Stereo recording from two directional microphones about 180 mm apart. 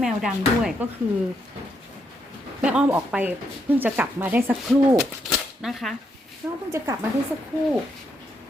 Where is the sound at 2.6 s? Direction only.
5° right (ahead or behind).